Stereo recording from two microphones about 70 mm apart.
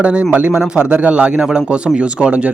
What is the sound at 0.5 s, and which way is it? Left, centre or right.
Speech, centre.